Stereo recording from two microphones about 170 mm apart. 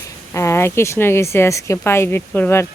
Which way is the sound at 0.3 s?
15° left (ahead or behind).